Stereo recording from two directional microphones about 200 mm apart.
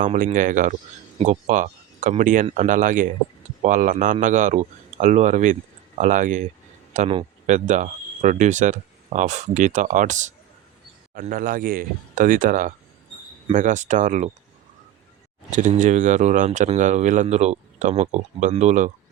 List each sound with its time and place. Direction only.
0.0 s speech: 35° right (ahead or behind)
15.4 s speech: 35° right (ahead or behind)